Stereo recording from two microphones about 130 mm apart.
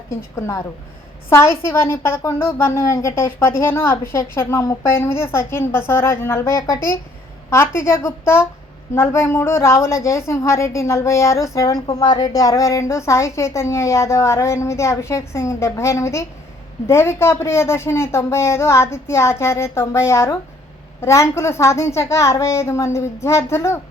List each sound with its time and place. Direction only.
0.3 s a woman's voice: 20° left (ahead or behind)